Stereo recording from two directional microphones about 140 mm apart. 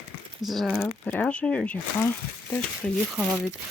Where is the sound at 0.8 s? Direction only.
10° left (ahead or behind).